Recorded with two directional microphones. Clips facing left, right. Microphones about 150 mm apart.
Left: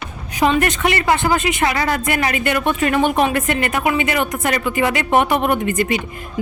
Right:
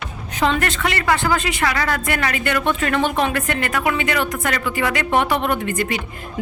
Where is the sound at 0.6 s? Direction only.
20° left (ahead or behind).